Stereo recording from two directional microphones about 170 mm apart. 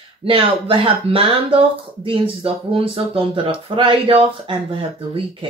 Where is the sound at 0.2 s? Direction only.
30° right (ahead or behind).